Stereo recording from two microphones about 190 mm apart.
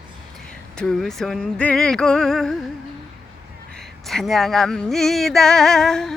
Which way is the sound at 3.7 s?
Centre (ahead or behind).